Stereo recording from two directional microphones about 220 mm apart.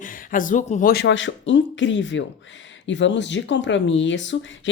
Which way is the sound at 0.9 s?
50° left (ahead or behind).